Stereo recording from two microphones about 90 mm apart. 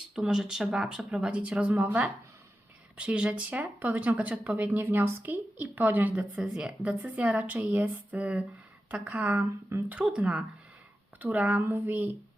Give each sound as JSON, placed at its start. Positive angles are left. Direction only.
{"t": 0.2, "sound": "speech", "side_deg": -5}